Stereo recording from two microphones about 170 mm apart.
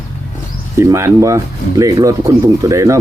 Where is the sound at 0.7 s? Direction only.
15° right (ahead or behind).